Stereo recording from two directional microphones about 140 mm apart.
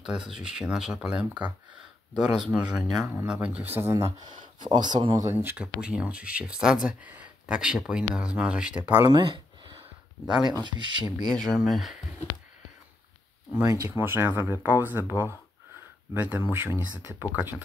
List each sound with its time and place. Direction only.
0.0 s speech: 5° right (ahead or behind)
2.5 s speech: 5° right (ahead or behind)
9.1 s a sound: 35° right (ahead or behind)
10.2 s speech: 5° right (ahead or behind)
10.5 s speech: 35° right (ahead or behind)
11.3 s speech: centre (ahead or behind)
13.5 s speech: 15° right (ahead or behind)